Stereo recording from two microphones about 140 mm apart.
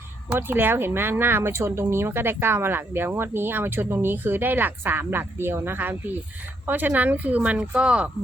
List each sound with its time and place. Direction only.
0.3 s speech: 15° right (ahead or behind)